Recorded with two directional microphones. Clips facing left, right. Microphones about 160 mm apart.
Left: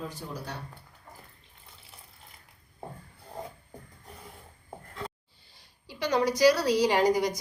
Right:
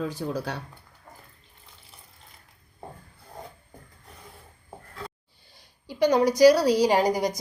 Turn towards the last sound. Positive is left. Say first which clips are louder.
# right 2 dB
turn(degrees=-40)  # may be behind; listen again after turning